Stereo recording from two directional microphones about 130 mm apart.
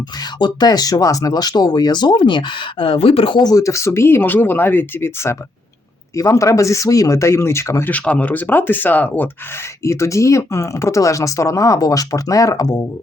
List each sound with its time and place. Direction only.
0.3 s speech: 35° left (ahead or behind)